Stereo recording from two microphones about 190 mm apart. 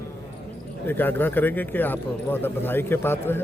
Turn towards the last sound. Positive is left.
turn(degrees=10)  # may be behind; listen again after turning